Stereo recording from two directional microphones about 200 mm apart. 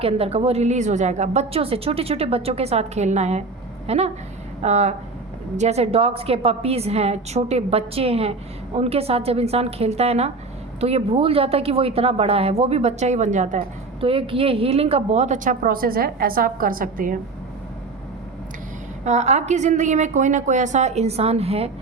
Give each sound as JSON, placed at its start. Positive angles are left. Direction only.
{"t": 0.0, "sound": "a woman's voice", "side_deg": -30}
{"t": 14.0, "sound": "a woman's voice", "side_deg": -25}
{"t": 19.0, "sound": "a woman's voice", "side_deg": -35}